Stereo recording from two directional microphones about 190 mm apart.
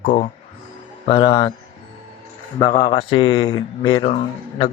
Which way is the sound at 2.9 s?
30° left (ahead or behind).